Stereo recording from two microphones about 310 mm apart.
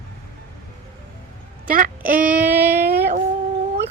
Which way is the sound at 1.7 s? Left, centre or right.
Right.